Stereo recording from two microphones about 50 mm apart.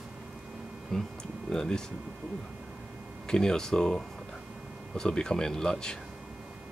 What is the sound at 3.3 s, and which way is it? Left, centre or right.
Speech, centre.